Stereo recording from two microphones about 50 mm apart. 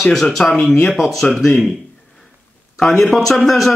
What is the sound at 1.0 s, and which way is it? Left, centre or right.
Speech, centre.